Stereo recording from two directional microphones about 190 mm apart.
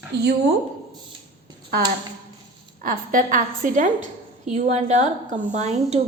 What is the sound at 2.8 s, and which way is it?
A woman's voice, 45° right (ahead or behind).